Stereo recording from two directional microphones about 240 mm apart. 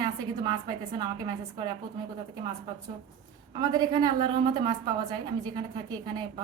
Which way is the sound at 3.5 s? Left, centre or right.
Centre.